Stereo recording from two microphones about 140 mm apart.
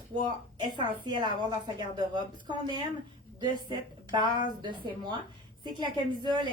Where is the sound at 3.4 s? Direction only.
30° right (ahead or behind).